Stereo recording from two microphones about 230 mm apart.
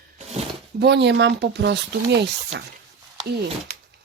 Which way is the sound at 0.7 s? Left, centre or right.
Right.